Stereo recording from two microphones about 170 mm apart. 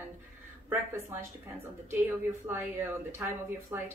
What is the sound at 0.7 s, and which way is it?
Speech, 15° right (ahead or behind).